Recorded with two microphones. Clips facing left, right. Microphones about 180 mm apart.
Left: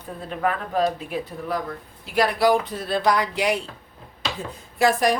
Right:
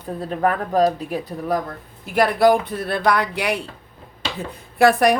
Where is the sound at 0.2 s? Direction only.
40° right (ahead or behind).